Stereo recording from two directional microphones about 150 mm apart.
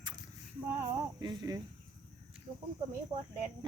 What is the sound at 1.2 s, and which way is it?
Speech, 25° right (ahead or behind).